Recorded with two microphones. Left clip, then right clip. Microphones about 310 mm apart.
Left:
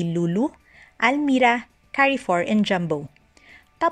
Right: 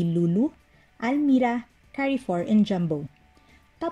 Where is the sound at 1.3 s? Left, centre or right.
Left.